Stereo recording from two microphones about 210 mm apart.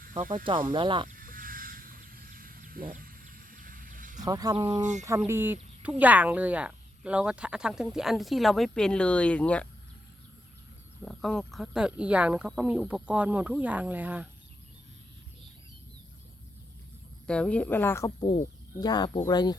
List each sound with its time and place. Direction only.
0.0 s wild animals: 40° right (ahead or behind)
0.7 s speech: 25° right (ahead or behind)
1.0 s a sound: 40° right (ahead or behind)
4.3 s speech: 20° right (ahead or behind)
4.8 s speech: 35° right (ahead or behind)
5.0 s speech: 10° right (ahead or behind); by 9.6 s 5° left (ahead or behind)
11.0 s speech: 5° left (ahead or behind)
17.2 s speech: 5° left (ahead or behind)